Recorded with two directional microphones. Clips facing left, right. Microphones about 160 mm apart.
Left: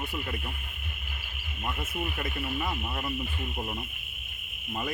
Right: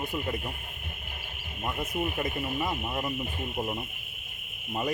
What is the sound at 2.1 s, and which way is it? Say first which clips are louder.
Speech: right 2 dB; 20° right (ahead or behind).